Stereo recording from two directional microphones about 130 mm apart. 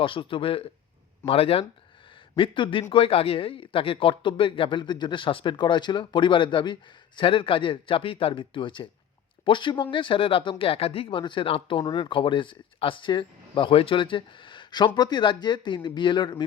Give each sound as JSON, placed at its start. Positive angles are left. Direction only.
{"t": 0.0, "sound": "speech", "side_deg": 40}